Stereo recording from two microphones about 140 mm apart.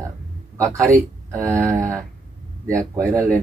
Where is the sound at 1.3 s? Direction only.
20° right (ahead or behind).